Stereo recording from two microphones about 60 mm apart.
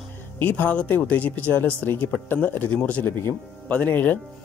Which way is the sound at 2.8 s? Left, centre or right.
Left.